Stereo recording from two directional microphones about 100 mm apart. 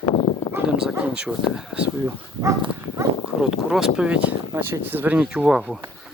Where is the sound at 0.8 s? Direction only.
5° right (ahead or behind).